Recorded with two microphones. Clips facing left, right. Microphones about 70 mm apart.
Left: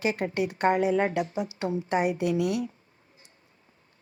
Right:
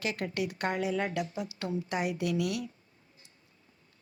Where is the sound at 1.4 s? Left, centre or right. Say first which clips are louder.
Left 5 dB; left.